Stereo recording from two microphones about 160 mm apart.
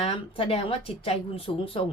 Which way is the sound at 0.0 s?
35° left (ahead or behind).